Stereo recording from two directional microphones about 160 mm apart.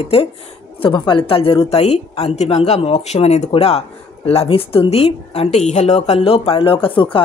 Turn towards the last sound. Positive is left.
turn(degrees=30)  # may be behind; listen again after turning